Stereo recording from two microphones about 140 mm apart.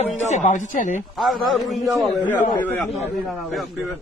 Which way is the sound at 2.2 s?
15° left (ahead or behind).